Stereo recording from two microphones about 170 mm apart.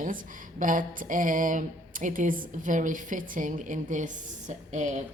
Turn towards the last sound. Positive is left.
turn(degrees=-45)  # may be behind; listen again after turning